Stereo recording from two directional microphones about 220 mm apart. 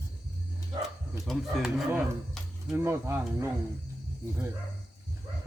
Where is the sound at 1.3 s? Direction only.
5° right (ahead or behind).